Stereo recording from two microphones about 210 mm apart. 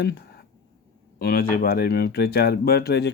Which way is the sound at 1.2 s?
45° left (ahead or behind).